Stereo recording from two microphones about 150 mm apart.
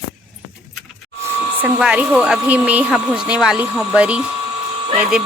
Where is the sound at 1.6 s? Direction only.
5° right (ahead or behind).